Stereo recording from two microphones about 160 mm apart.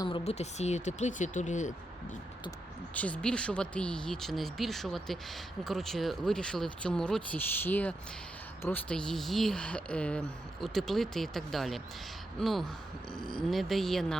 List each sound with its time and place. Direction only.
0.3 s speech: 45° left (ahead or behind)
2.9 s speech: 10° left (ahead or behind)